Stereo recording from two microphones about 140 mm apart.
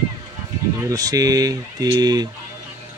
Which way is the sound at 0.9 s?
25° right (ahead or behind).